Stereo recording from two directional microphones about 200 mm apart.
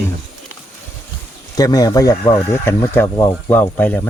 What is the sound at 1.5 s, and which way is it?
Speech, 20° left (ahead or behind).